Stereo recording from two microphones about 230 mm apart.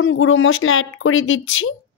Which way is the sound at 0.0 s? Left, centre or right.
Left.